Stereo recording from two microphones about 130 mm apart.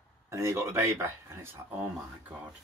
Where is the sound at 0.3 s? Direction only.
20° right (ahead or behind).